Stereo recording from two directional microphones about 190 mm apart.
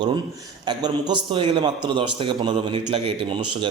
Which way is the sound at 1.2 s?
25° right (ahead or behind).